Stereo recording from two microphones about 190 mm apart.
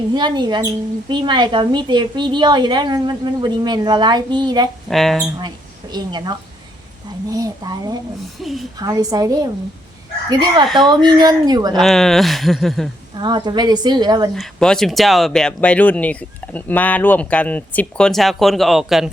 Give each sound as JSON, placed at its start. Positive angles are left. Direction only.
{"t": 0.1, "sound": "speech", "side_deg": -25}
{"t": 4.9, "sound": "speech", "side_deg": 0}
{"t": 5.9, "sound": "speech", "side_deg": -20}
{"t": 8.4, "sound": "speech", "side_deg": 0}
{"t": 8.8, "sound": "speech", "side_deg": -20}
{"t": 10.7, "sound": "speech", "side_deg": 0}
{"t": 10.9, "sound": "speech", "side_deg": -20}
{"t": 11.8, "sound": "speech", "side_deg": 0}
{"t": 13.1, "sound": "speech", "side_deg": -25}
{"t": 14.3, "sound": "speech", "side_deg": 0}